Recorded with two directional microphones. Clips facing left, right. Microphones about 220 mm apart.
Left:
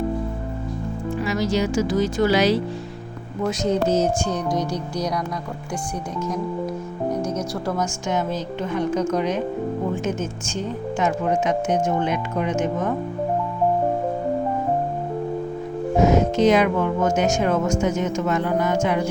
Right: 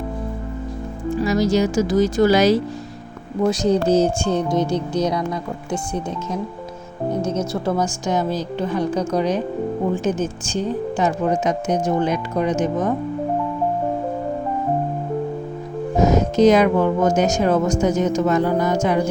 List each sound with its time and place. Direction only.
1.2 s speech: 40° right (ahead or behind)
3.4 s speech: 35° right (ahead or behind)
7.1 s speech: 25° right (ahead or behind)
8.0 s speech: 35° right (ahead or behind)
16.0 s speech: 40° right (ahead or behind)